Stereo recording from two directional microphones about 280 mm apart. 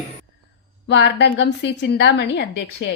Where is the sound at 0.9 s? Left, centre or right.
Left.